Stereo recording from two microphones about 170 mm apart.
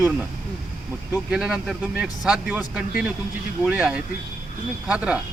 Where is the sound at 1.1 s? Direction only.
5° right (ahead or behind).